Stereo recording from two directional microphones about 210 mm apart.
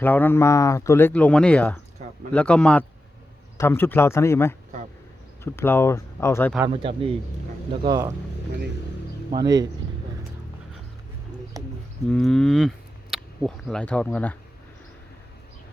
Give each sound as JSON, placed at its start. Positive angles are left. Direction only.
{"t": 0.0, "sound": "a man's voice", "side_deg": 10}
{"t": 6.7, "sound": "speech", "side_deg": -25}
{"t": 9.4, "sound": "speech", "side_deg": -20}
{"t": 11.6, "sound": "bird", "side_deg": -15}
{"t": 12.0, "sound": "speech", "side_deg": 5}